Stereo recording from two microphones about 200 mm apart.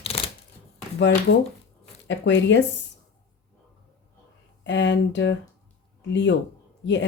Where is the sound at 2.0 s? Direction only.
65° left (ahead or behind).